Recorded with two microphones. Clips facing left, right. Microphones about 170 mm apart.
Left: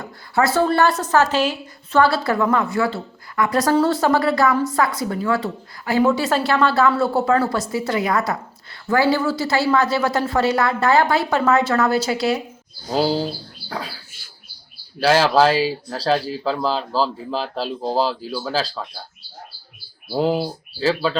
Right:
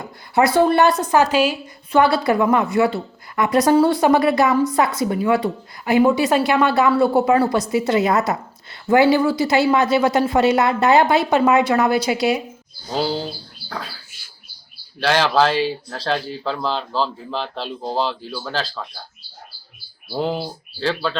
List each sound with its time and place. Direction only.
0.0 s speech: 15° right (ahead or behind)
13.1 s speech: 5° left (ahead or behind)
15.0 s speech: 5° left (ahead or behind)
17.8 s speech: 35° left (ahead or behind)
18.4 s speech: 10° left (ahead or behind)
20.1 s speech: 5° left (ahead or behind)